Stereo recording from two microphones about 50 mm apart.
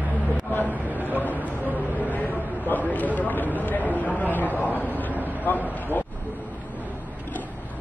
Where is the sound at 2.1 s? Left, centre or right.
Left.